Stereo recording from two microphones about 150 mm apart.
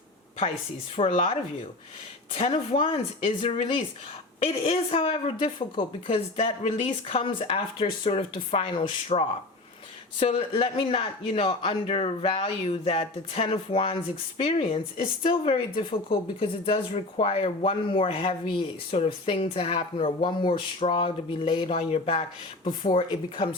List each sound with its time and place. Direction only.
1.0 s speech: 40° left (ahead or behind)
2.3 s speech: 40° left (ahead or behind)
8.8 s speech: 55° left (ahead or behind)
10.2 s speech: 40° left (ahead or behind)